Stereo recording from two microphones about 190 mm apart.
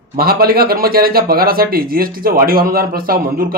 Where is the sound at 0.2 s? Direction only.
50° right (ahead or behind).